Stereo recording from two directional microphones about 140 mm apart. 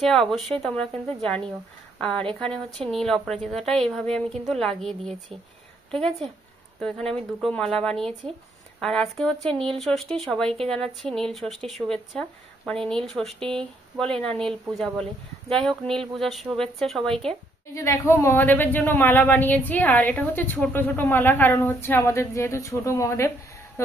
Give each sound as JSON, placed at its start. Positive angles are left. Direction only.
{"t": 0.0, "sound": "a woman's voice", "side_deg": 5}
{"t": 17.7, "sound": "speech", "side_deg": 20}